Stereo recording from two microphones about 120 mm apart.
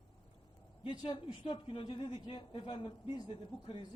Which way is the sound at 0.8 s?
40° left (ahead or behind).